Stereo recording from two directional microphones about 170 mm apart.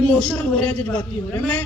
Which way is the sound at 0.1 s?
5° left (ahead or behind).